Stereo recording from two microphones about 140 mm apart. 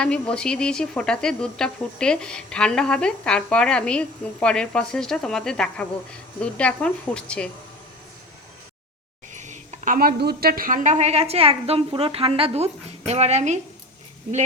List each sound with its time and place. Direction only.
0.0 s speech: 5° left (ahead or behind)
9.3 s speech: 60° right (ahead or behind)